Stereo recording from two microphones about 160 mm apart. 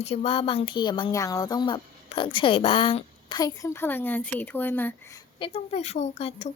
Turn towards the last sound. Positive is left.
turn(degrees=40)  # may be behind; listen again after turning